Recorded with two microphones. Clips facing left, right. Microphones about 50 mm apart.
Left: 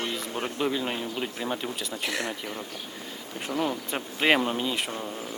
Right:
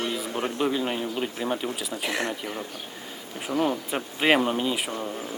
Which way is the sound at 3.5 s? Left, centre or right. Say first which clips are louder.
Right 4 dB; right.